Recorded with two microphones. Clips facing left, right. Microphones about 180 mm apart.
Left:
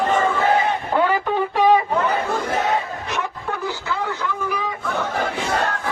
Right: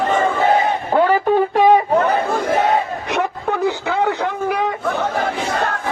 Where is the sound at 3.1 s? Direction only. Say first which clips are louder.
Right 8 dB; 70° right (ahead or behind).